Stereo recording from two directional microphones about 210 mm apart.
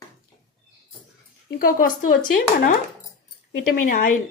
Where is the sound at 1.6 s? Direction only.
40° left (ahead or behind).